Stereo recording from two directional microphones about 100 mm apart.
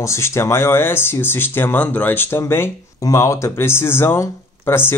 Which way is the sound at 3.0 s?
35° left (ahead or behind).